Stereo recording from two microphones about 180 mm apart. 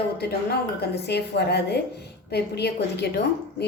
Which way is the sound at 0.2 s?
60° left (ahead or behind).